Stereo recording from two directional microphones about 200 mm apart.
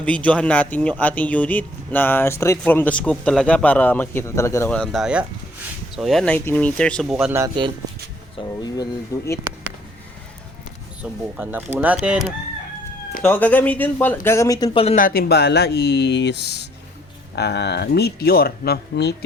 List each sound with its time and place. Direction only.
0.0 s speech: 5° left (ahead or behind)
7.3 s speech: 20° right (ahead or behind)
8.4 s speech: 20° left (ahead or behind)
11.3 s speech: 10° right (ahead or behind)
13.2 s speech: 10° left (ahead or behind); by 14.9 s 25° left (ahead or behind)
14.9 s speech: 45° left (ahead or behind)